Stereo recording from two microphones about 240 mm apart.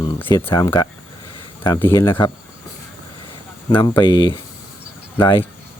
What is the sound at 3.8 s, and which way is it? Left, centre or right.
Speech, centre.